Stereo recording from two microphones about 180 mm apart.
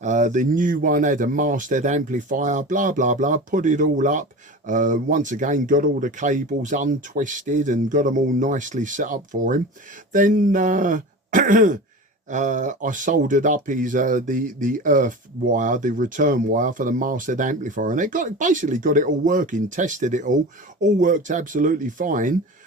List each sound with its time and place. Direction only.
0.0 s speech: 45° right (ahead or behind)